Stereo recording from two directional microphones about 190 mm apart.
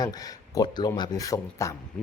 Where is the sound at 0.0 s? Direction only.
20° left (ahead or behind).